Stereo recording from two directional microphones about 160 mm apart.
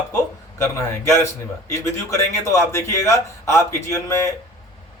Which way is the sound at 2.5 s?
20° left (ahead or behind).